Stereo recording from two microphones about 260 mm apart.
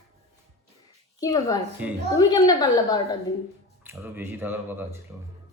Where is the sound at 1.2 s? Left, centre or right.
Centre.